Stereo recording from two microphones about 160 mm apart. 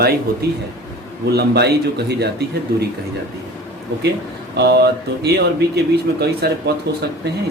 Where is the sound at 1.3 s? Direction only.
90° right.